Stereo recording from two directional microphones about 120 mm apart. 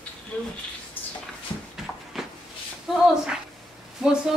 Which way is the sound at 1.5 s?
30° left (ahead or behind).